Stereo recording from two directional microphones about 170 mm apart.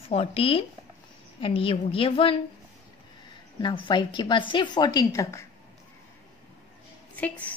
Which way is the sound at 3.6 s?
25° left (ahead or behind).